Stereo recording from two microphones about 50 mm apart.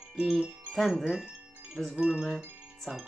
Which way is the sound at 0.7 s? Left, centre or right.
Centre.